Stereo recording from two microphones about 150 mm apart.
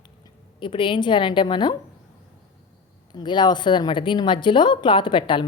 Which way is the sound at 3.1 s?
30° left (ahead or behind).